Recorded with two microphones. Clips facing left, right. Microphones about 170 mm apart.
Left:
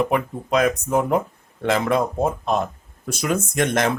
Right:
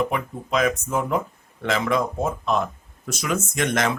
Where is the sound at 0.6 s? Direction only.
60° left (ahead or behind).